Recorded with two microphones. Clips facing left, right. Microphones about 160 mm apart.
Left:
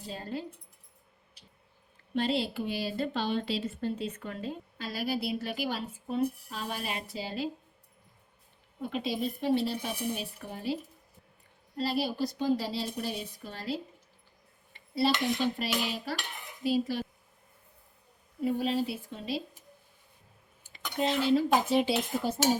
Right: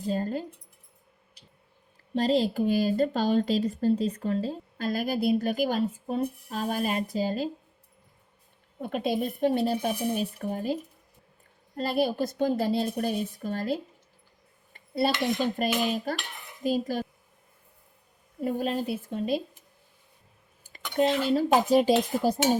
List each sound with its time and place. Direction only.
0.0 s speech: 45° right (ahead or behind)
2.1 s a woman's voice: 40° right (ahead or behind)
4.8 s speech: 50° right (ahead or behind)
8.9 s speech: 50° right (ahead or behind)
11.8 s speech: 50° right (ahead or behind)
14.7 s dishes: 50° right (ahead or behind)
15.5 s speech: 50° right (ahead or behind)
18.4 s speech: 50° right (ahead or behind)
20.9 s a woman's voice: 40° right (ahead or behind)